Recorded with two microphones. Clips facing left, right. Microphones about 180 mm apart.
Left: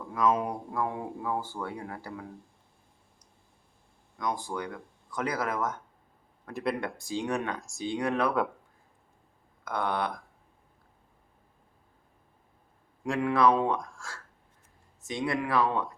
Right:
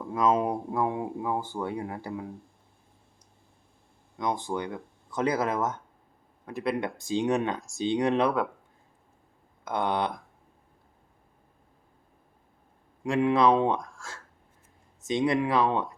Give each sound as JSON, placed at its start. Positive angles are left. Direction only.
{"t": 0.1, "sound": "speech", "side_deg": -25}
{"t": 4.2, "sound": "speech", "side_deg": -25}
{"t": 6.5, "sound": "speech", "side_deg": 0}
{"t": 6.7, "sound": "speech", "side_deg": -20}
{"t": 9.6, "sound": "speech", "side_deg": -20}
{"t": 13.1, "sound": "speech", "side_deg": -20}
{"t": 13.7, "sound": "speech", "side_deg": 0}
{"t": 15.0, "sound": "speech", "side_deg": -20}